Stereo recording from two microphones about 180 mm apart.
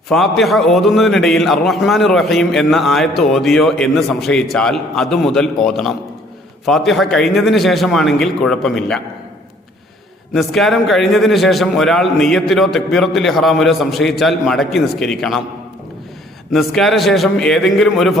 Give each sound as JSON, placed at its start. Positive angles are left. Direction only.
{"t": 0.1, "sound": "a man's voice", "side_deg": 0}
{"t": 10.3, "sound": "a man's voice", "side_deg": 0}
{"t": 16.5, "sound": "a man's voice", "side_deg": 0}